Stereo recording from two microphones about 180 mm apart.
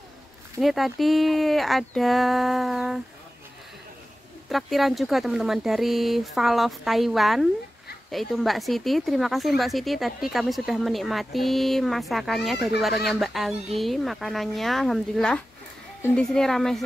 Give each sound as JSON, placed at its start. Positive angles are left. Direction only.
{"t": 0.6, "sound": "speech", "side_deg": 0}
{"t": 4.5, "sound": "speech", "side_deg": 0}